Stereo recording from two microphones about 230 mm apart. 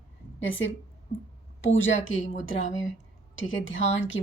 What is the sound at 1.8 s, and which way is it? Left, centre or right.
Speech, left.